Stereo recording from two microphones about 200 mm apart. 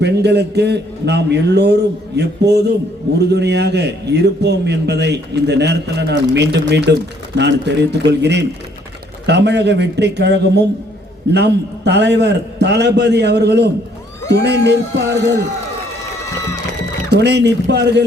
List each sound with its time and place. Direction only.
0.0 s a man's voice: 55° right (ahead or behind)
17.1 s a man's voice: 55° right (ahead or behind)